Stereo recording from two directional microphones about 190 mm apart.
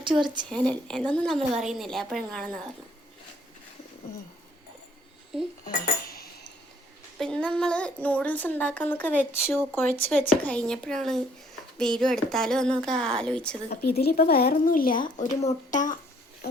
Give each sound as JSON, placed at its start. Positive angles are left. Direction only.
{"t": 0.0, "sound": "a woman's voice", "side_deg": -25}
{"t": 0.5, "sound": "a woman's voice", "side_deg": 5}
{"t": 5.6, "sound": "dishes", "side_deg": 50}
{"t": 7.2, "sound": "a woman's voice", "side_deg": 5}
{"t": 13.7, "sound": "speech", "side_deg": 55}